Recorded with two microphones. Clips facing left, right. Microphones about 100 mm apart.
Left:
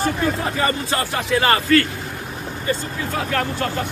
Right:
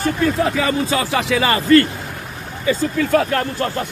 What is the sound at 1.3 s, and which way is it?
Speech, 90° right.